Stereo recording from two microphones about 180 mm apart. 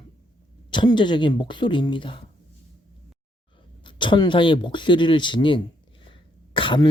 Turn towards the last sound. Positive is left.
turn(degrees=25)  # may be behind; listen again after turning